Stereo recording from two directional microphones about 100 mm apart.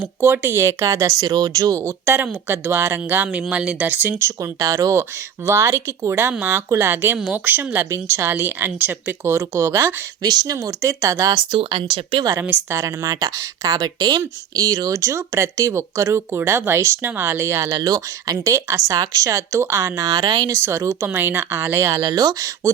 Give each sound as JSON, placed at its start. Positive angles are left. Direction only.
{"t": 0.2, "sound": "speech", "side_deg": -20}
{"t": 4.6, "sound": "speech", "side_deg": -30}
{"t": 10.2, "sound": "speech", "side_deg": -40}
{"t": 11.5, "sound": "speech", "side_deg": -65}
{"t": 12.4, "sound": "speech", "side_deg": -25}
{"t": 17.7, "sound": "speech", "side_deg": -40}